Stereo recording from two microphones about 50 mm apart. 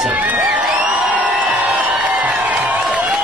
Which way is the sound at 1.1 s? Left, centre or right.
Right.